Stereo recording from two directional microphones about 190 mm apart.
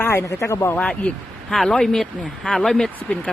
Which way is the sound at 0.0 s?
15° left (ahead or behind).